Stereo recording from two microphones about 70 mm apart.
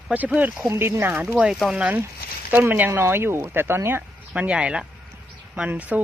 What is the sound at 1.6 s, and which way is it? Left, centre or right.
Speech, centre.